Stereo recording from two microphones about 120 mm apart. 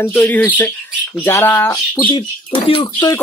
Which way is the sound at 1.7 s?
40° left (ahead or behind).